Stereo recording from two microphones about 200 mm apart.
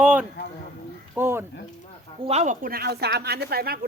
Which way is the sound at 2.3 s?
35° right (ahead or behind).